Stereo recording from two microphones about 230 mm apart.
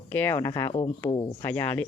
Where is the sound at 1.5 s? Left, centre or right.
Centre.